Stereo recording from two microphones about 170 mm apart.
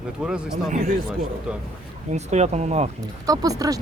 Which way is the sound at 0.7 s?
45° right (ahead or behind).